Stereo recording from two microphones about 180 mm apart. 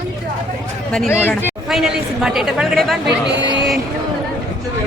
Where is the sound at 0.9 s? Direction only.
5° left (ahead or behind).